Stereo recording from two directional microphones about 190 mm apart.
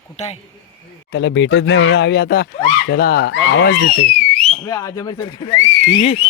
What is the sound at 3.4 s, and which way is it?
Speech, 70° left (ahead or behind).